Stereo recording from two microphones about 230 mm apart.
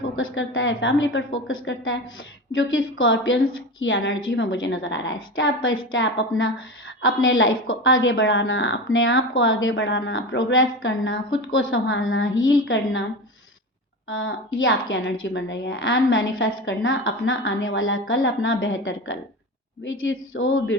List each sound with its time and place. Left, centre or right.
0.2 s a woman's voice: left
14.1 s a woman's voice: left